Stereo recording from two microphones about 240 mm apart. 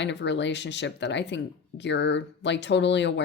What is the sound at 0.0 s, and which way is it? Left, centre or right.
Speech, left.